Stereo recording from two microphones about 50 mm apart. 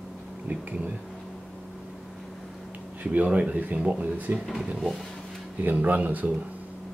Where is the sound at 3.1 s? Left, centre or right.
Right.